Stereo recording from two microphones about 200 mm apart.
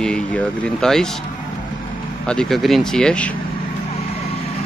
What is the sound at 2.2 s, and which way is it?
Speech, 5° left (ahead or behind).